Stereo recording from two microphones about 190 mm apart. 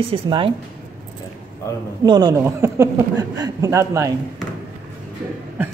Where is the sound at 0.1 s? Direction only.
30° right (ahead or behind).